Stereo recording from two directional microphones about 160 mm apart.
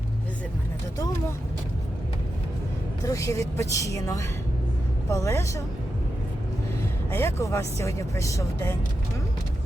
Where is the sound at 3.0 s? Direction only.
20° left (ahead or behind).